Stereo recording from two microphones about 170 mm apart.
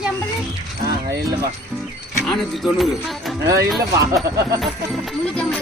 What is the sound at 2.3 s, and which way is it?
Speech, centre (ahead or behind).